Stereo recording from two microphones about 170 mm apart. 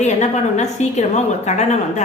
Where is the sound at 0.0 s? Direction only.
40° left (ahead or behind).